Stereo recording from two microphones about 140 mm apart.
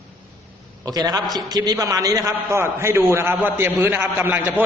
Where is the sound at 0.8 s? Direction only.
25° right (ahead or behind).